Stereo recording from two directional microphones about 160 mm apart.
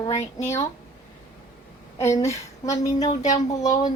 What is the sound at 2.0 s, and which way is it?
Speech, 20° left (ahead or behind).